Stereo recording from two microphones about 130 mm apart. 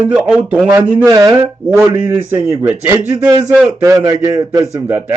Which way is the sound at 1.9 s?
15° right (ahead or behind).